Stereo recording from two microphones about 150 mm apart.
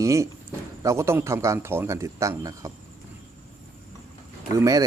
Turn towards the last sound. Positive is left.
turn(degrees=-20)  # may be behind; listen again after turning